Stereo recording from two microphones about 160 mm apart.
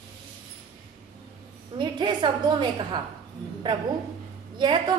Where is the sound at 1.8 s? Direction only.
30° right (ahead or behind).